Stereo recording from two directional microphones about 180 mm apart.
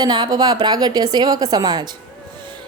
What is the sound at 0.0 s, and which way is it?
A woman's voice, 25° right (ahead or behind).